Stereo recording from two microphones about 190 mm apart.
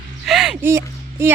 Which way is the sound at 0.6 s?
15° right (ahead or behind).